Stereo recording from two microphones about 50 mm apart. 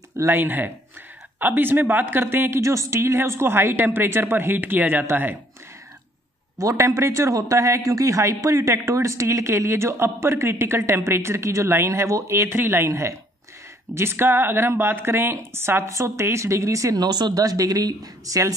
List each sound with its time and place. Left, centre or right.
0.3 s a woman's voice: right
2.6 s a woman's voice: right
3.0 s a woman's voice: right
6.6 s a man's voice: right
10.9 s speech: right
12.5 s a woman's voice: right
12.8 s speech: right
13.9 s a woman's voice: right